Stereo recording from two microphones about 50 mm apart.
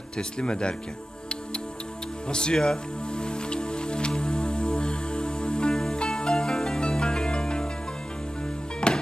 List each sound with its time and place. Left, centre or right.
0.2 s speech: centre
2.2 s music: centre
8.8 s music: centre